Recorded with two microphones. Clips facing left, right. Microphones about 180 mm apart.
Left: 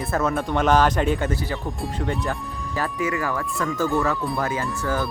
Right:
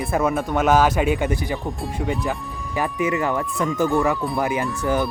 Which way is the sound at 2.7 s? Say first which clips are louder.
Right 3 dB; 20° right (ahead or behind).